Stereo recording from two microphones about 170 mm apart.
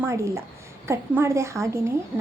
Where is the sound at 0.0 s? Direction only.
15° right (ahead or behind).